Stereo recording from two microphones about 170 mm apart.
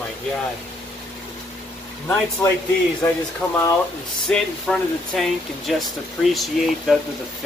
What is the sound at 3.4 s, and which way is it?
Speech, 5° left (ahead or behind).